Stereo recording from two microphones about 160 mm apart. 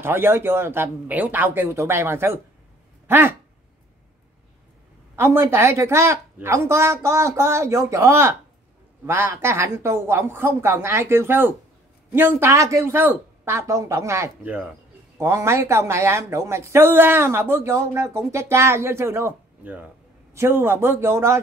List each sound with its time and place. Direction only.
0.0 s speech: 15° right (ahead or behind)
3.1 s a sound: 15° right (ahead or behind)
5.1 s speech: 15° right (ahead or behind)